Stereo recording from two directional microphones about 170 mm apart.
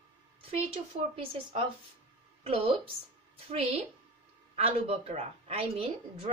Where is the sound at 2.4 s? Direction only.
35° right (ahead or behind).